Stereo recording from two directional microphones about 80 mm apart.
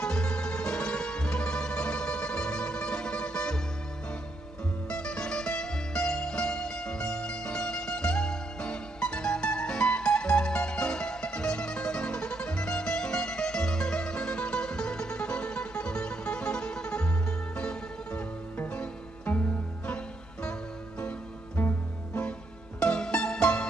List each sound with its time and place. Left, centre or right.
0.0 s music: centre
4.9 s music: centre
21.0 s music: centre